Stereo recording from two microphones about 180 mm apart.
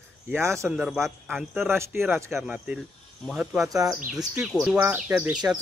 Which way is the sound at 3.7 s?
20° right (ahead or behind).